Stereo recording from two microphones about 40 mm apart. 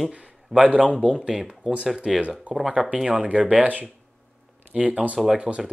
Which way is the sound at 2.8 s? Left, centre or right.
Right.